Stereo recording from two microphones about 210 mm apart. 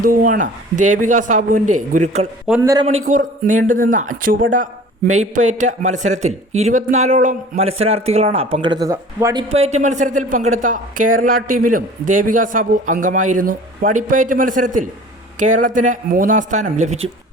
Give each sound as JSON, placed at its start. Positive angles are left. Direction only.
{"t": 0.0, "sound": "a man's voice", "side_deg": -45}
{"t": 2.6, "sound": "a man's voice", "side_deg": -15}
{"t": 3.1, "sound": "a man's voice", "side_deg": -40}
{"t": 9.5, "sound": "a man's voice", "side_deg": -30}